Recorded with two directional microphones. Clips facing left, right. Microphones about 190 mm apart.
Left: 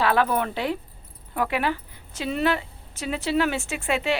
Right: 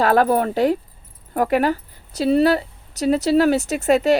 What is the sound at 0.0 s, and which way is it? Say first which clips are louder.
A woman's voice: right 6 dB; 40° right (ahead or behind).